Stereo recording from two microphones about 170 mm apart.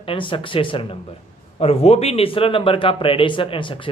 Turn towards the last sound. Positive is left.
turn(degrees=30)  # may be behind; listen again after turning